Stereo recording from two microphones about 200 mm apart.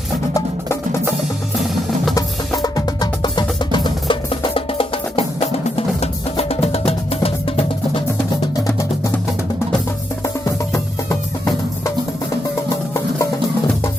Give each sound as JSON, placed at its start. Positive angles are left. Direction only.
{"t": 2.1, "sound": "music", "side_deg": 15}
{"t": 8.6, "sound": "music", "side_deg": 15}
{"t": 10.2, "sound": "music", "side_deg": 15}